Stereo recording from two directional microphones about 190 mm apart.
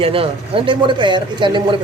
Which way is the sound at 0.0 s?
30° right (ahead or behind).